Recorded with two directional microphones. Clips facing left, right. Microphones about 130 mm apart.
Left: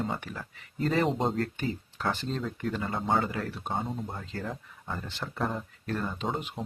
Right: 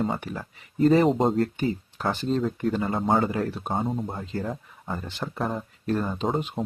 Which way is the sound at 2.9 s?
40° right (ahead or behind).